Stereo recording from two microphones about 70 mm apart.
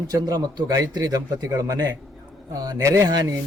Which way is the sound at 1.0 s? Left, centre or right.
Right.